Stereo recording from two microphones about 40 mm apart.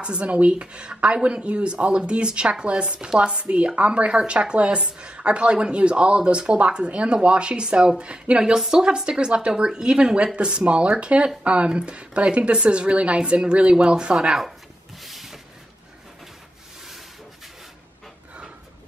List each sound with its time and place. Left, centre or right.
0.0 s speech: right
8.5 s speech: centre
14.1 s speech: centre
15.0 s vehicle: centre